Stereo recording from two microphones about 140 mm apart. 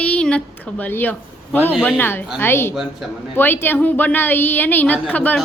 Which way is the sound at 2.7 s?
5° right (ahead or behind).